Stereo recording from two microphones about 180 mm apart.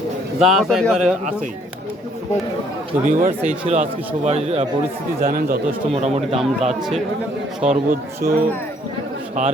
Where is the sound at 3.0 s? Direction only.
45° right (ahead or behind).